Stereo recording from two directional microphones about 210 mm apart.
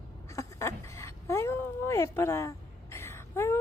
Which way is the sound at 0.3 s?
15° left (ahead or behind).